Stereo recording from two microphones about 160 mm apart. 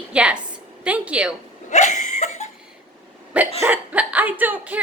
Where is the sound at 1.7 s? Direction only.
50° left (ahead or behind).